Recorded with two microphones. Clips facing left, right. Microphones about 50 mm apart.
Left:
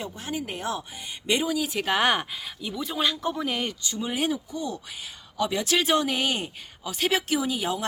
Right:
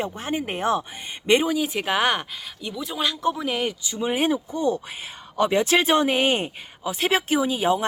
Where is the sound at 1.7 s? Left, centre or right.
Centre.